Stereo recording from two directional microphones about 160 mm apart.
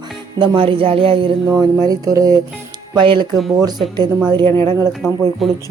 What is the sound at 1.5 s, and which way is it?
Speech, 20° right (ahead or behind).